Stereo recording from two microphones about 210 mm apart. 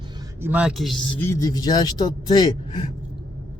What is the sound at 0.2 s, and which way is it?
A man's voice, 10° right (ahead or behind).